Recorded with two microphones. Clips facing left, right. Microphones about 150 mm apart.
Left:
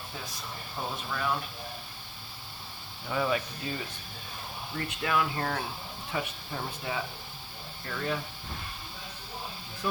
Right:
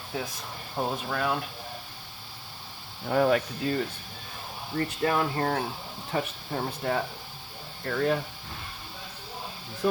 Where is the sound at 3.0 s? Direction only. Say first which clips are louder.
Right 6 dB; 55° right (ahead or behind).